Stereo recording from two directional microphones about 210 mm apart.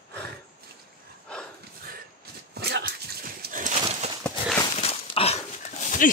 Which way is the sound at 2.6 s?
50° right (ahead or behind).